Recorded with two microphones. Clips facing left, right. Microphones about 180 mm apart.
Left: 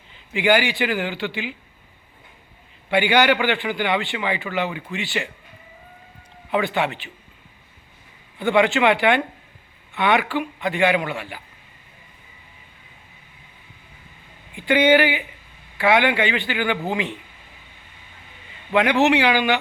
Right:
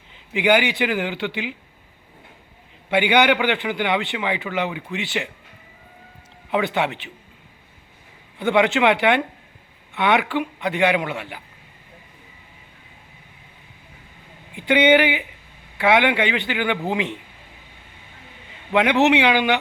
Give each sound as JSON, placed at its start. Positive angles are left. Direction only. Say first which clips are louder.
{"t": 0.3, "sound": "a man's voice", "louder": "right 1 dB", "side_deg": -15}
{"t": 2.9, "sound": "speech", "louder": "even", "side_deg": -20}
{"t": 6.5, "sound": "speech", "louder": "even", "side_deg": -20}
{"t": 8.4, "sound": "speech", "louder": "even", "side_deg": -20}
{"t": 14.5, "sound": "a man's voice", "louder": "even", "side_deg": -20}
{"t": 18.7, "sound": "speech", "louder": "right 1 dB", "side_deg": -20}